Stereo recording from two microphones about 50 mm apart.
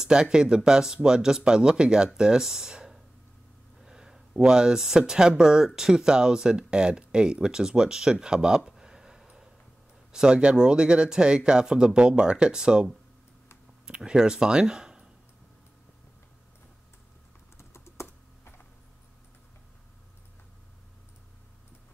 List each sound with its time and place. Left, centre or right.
0.0 s speech: centre
17.6 s typing: left